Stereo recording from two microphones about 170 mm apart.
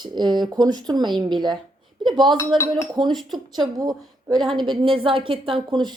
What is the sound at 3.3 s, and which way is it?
A woman's voice, 25° right (ahead or behind).